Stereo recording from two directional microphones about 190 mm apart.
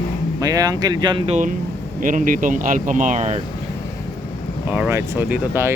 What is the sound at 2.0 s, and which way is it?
Speech, 45° right (ahead or behind).